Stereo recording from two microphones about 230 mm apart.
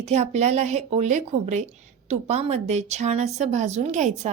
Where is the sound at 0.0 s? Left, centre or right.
Right.